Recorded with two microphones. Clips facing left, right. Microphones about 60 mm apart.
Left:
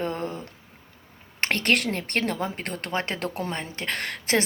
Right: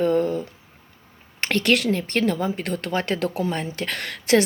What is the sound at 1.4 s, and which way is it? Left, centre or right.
Speech, left.